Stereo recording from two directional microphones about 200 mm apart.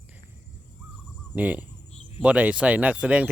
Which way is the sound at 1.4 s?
5° right (ahead or behind).